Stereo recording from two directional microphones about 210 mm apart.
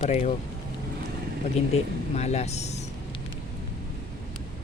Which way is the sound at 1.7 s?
30° left (ahead or behind).